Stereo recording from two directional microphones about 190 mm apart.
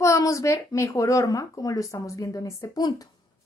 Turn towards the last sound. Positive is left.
turn(degrees=20)  # may be behind; listen again after turning